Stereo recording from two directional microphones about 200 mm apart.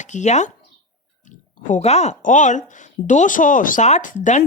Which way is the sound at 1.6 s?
35° left (ahead or behind).